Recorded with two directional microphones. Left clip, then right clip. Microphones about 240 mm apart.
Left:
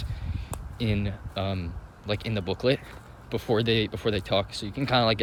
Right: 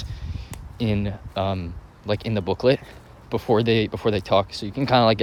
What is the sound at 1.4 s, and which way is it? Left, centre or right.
Speech, right.